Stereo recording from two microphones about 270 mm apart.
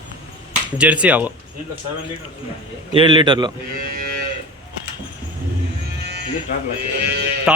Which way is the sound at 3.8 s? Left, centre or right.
Right.